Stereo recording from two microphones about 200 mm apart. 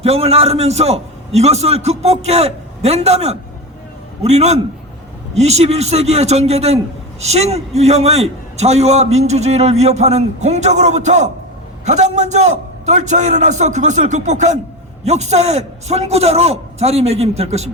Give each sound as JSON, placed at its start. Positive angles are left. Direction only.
{"t": 0.0, "sound": "a man's voice", "side_deg": -30}